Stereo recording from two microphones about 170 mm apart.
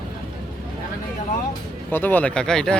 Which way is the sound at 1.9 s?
10° left (ahead or behind).